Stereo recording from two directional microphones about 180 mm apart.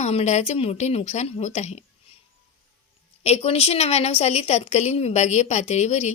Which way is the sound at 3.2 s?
35° left (ahead or behind).